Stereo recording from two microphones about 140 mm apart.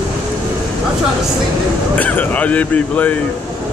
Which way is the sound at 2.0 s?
10° left (ahead or behind).